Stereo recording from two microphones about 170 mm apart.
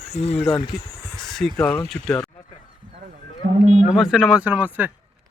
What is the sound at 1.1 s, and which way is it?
Speech, centre (ahead or behind).